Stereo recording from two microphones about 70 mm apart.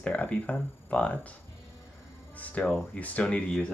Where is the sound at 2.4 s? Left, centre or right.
Centre.